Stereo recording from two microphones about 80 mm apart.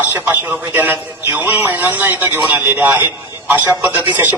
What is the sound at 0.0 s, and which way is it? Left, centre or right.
A man's voice, right.